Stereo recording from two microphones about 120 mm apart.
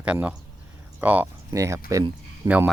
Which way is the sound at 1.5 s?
25° right (ahead or behind).